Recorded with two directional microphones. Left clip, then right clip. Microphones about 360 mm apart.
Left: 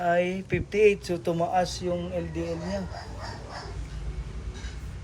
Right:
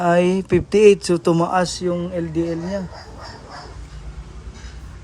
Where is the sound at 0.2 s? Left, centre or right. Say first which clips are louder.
Right 10 dB; right.